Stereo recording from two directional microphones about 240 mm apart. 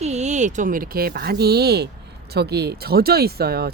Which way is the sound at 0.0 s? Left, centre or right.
Right.